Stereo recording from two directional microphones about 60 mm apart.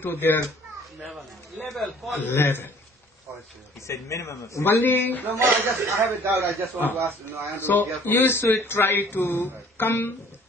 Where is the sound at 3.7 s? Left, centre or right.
Left.